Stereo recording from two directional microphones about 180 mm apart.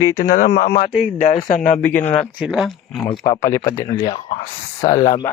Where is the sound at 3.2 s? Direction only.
20° left (ahead or behind).